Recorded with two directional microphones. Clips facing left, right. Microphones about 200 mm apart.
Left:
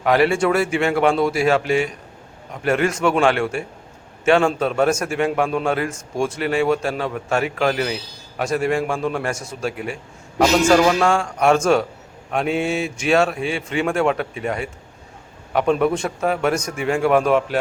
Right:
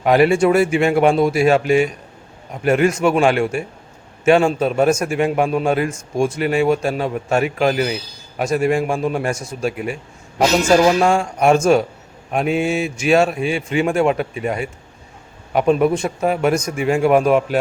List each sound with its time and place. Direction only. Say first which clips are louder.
0.0 s a man's voice: right 3 dB; 20° right (ahead or behind)